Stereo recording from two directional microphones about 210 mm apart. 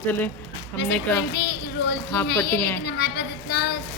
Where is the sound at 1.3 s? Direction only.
50° left (ahead or behind).